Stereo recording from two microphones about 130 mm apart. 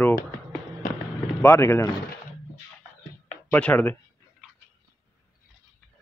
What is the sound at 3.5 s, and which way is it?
Speech, 10° left (ahead or behind).